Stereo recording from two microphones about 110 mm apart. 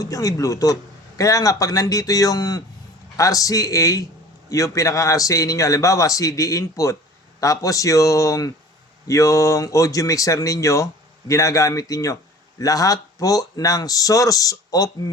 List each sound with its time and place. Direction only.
0.0 s speech: 30° left (ahead or behind)